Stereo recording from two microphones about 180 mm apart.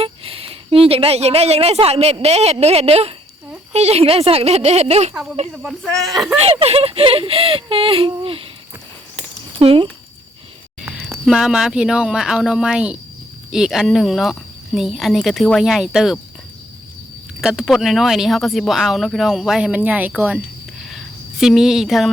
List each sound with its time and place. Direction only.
0.0 s a woman's voice: 30° right (ahead or behind)
5.6 s speech: centre (ahead or behind)
6.4 s speech: 35° right (ahead or behind)
9.6 s speech: 30° right (ahead or behind)
11.3 s speech: 5° right (ahead or behind)
17.4 s speech: centre (ahead or behind)
20.8 s a sound: centre (ahead or behind)